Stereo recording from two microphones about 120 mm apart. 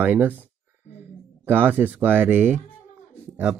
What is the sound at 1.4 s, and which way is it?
A man's voice, 15° right (ahead or behind).